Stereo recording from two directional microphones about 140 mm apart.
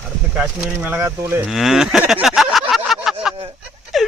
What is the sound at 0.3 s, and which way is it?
Speech, 5° right (ahead or behind).